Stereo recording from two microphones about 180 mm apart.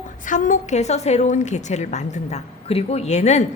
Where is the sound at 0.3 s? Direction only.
45° left (ahead or behind).